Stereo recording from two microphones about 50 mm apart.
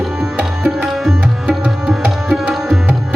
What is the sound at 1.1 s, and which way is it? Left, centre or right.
Music, centre.